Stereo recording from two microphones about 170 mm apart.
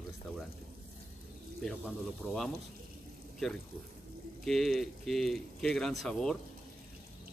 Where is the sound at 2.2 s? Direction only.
10° left (ahead or behind).